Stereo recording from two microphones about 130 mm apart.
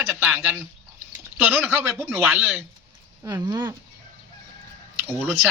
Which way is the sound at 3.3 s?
25° right (ahead or behind).